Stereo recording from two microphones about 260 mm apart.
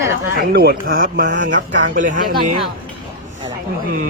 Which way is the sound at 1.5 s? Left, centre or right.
Right.